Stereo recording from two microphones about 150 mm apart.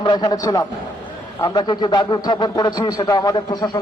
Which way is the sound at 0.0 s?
30° left (ahead or behind).